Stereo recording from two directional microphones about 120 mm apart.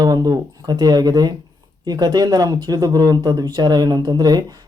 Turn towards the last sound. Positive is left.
turn(degrees=-35)  # may be behind; listen again after turning